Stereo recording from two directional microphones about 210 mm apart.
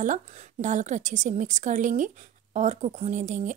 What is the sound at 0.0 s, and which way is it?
Speech, 35° right (ahead or behind).